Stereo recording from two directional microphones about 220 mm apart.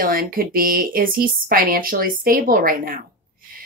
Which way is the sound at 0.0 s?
40° right (ahead or behind).